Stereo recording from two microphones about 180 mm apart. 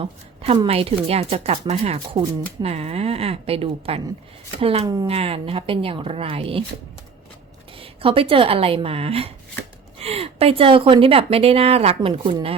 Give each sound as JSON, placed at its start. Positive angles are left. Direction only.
{"t": 0.0, "sound": "speech", "side_deg": -25}
{"t": 7.8, "sound": "speech", "side_deg": -30}